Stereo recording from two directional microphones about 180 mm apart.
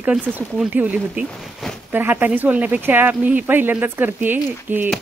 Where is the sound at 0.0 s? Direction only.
5° right (ahead or behind).